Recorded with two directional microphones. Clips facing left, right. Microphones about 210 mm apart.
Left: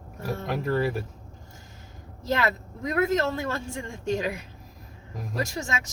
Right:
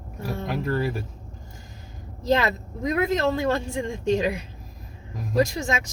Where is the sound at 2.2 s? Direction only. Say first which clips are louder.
Right 4 dB; 20° right (ahead or behind).